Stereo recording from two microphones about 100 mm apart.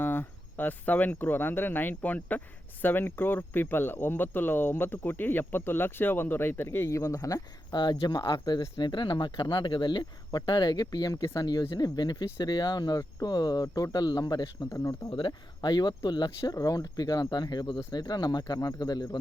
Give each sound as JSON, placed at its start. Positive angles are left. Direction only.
{"t": 0.0, "sound": "speech", "side_deg": 20}